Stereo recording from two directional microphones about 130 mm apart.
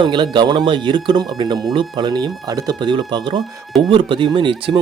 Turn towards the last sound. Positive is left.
turn(degrees=-40)  # may be behind; listen again after turning